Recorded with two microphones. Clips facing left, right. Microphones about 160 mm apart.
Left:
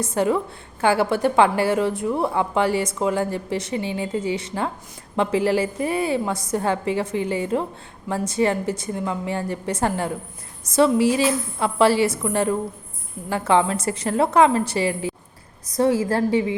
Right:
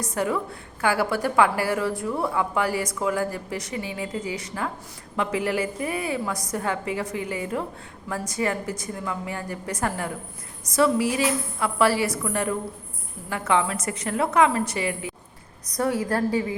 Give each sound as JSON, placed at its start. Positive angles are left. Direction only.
{"t": 0.0, "sound": "a woman's voice", "side_deg": 25}